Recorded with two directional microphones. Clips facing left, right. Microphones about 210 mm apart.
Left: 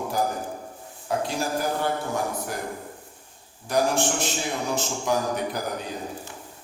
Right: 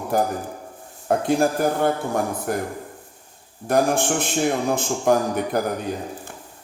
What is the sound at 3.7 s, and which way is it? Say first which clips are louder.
A man's voice: right 4 dB; 55° right (ahead or behind).